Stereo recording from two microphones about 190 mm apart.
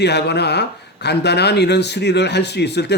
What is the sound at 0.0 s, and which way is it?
Speech, 60° left (ahead or behind).